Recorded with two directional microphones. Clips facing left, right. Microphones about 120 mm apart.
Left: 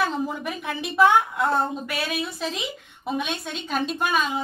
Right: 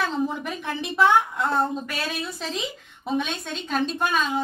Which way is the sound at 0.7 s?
Centre (ahead or behind).